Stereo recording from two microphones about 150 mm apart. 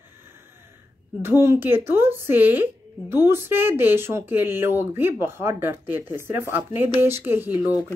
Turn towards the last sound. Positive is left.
turn(degrees=-15)  # may be behind; listen again after turning